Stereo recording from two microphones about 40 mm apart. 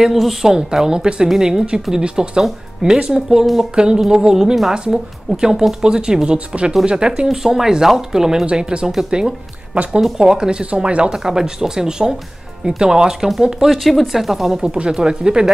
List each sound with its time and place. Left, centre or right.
0.0 s speech: centre; by 1.3 s right
1.4 s speech: centre
7.2 s speech: centre
8.5 s speech: right
10.1 s speech: centre
11.2 s speech: centre
13.7 s speech: centre
14.6 s speech: right